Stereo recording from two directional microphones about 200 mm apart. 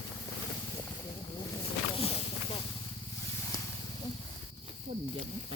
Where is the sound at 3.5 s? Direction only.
20° left (ahead or behind).